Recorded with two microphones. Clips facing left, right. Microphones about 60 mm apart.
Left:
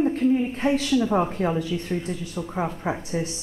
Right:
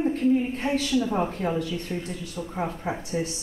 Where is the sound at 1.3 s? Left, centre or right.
Left.